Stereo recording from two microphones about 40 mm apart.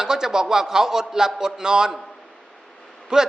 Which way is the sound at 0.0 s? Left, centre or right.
Centre.